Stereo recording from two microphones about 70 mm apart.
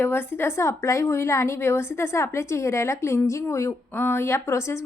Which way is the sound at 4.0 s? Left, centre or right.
Left.